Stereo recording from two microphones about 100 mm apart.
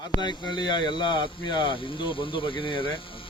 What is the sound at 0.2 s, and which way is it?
Speech, 45° left (ahead or behind).